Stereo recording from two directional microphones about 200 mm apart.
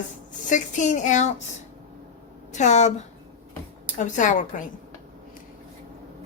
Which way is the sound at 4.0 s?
40° left (ahead or behind).